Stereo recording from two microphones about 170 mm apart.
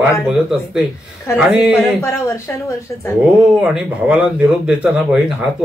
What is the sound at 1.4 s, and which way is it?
Speech, 5° right (ahead or behind).